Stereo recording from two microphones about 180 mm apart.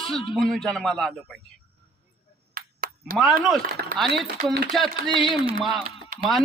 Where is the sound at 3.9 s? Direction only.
Centre (ahead or behind).